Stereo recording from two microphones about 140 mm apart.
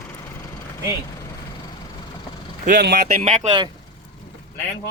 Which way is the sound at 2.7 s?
90° right.